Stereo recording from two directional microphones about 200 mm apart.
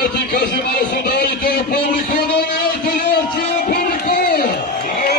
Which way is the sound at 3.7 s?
50° left (ahead or behind).